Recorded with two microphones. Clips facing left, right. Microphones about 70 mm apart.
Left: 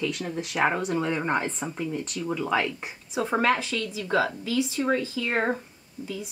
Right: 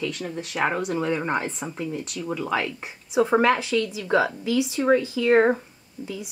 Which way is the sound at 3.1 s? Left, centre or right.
Centre.